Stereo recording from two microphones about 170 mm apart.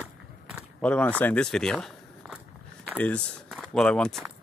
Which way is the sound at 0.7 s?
10° left (ahead or behind).